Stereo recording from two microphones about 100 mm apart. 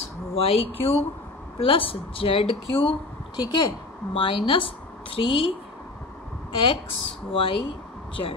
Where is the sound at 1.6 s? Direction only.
65° left (ahead or behind).